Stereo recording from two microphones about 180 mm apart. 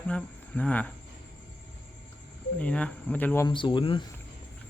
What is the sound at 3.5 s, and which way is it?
Speech, 25° left (ahead or behind).